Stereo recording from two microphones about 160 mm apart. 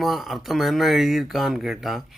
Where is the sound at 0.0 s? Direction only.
Centre (ahead or behind).